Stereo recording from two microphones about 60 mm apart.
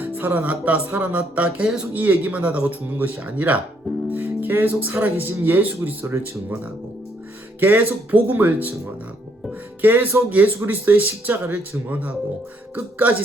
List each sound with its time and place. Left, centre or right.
0.0 s music: right
4.1 s speech: right
7.6 s speech: right
9.8 s music: right